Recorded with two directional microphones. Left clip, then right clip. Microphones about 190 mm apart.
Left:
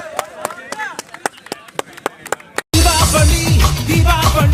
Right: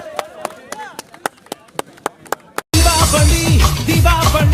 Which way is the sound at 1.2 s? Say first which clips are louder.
Left 1 dB; 30° left (ahead or behind).